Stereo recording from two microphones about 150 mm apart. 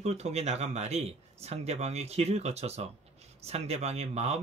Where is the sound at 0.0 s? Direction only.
45° right (ahead or behind).